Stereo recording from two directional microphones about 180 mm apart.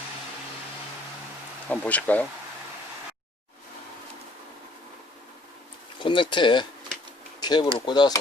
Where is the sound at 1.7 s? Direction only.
10° left (ahead or behind).